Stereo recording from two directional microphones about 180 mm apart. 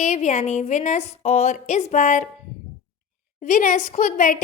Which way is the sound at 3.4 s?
50° left (ahead or behind).